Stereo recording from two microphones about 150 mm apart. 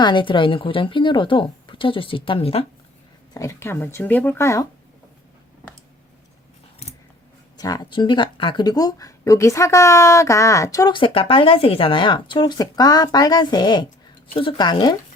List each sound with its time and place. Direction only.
0.0 s speech: 30° left (ahead or behind)
3.3 s speech: 20° left (ahead or behind)
7.5 s speech: 25° left (ahead or behind)